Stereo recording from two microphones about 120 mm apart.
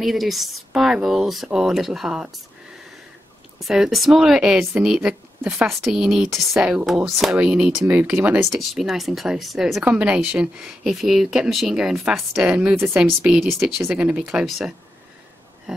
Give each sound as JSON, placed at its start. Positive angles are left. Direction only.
{"t": 0.0, "sound": "speech", "side_deg": 0}
{"t": 3.5, "sound": "speech", "side_deg": -5}
{"t": 8.5, "sound": "speech", "side_deg": 0}
{"t": 13.2, "sound": "speech", "side_deg": -5}
{"t": 13.7, "sound": "speech", "side_deg": -15}